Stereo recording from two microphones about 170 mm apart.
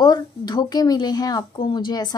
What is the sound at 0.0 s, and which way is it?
A woman's voice, 25° left (ahead or behind).